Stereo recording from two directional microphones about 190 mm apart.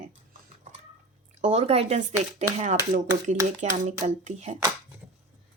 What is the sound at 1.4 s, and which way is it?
Speech, 35° right (ahead or behind).